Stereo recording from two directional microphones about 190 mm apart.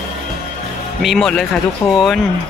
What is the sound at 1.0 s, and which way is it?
Speech, 5° left (ahead or behind).